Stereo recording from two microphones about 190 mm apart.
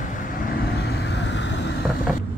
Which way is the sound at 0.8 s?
60° left (ahead or behind).